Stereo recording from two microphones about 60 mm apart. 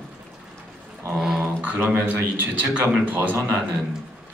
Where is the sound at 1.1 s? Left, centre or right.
Centre.